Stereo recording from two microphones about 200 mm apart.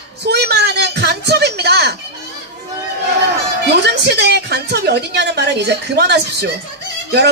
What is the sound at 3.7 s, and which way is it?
Speech, 55° right (ahead or behind).